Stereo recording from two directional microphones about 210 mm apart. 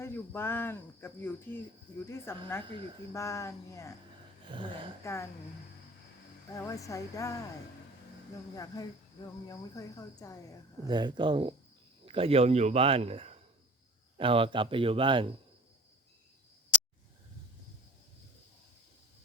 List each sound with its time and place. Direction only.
0.0 s speech: 10° left (ahead or behind)
5.0 s speech: 15° left (ahead or behind)
6.5 s speech: 15° left (ahead or behind)
8.5 s speech: 15° left (ahead or behind)
10.8 s a man's voice: 20° right (ahead or behind)